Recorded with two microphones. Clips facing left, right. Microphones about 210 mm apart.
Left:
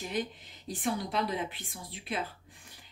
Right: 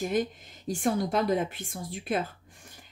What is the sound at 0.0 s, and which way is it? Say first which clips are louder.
A woman's voice: right 7 dB; 45° right (ahead or behind).